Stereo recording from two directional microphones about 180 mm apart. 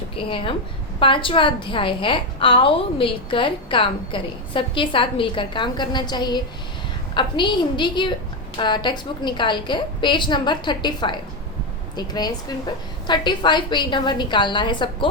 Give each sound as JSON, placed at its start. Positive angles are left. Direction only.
{"t": 0.2, "sound": "a woman's voice", "side_deg": 30}